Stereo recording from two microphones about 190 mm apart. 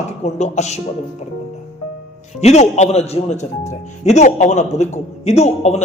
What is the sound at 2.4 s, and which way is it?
Speech, 35° left (ahead or behind).